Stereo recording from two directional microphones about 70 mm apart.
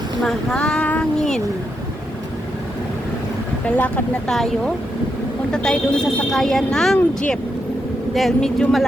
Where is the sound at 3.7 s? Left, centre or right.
Left.